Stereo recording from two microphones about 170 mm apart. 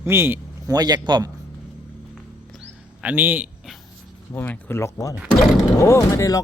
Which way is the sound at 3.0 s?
10° right (ahead or behind).